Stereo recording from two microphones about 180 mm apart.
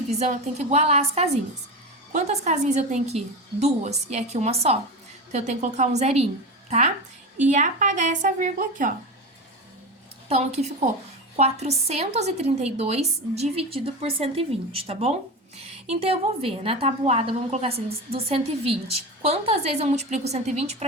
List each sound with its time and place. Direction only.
0.1 s a woman's voice: 40° right (ahead or behind)
10.2 s a woman's voice: 35° right (ahead or behind)